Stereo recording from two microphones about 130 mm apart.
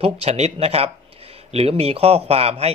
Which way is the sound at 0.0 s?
55° right (ahead or behind).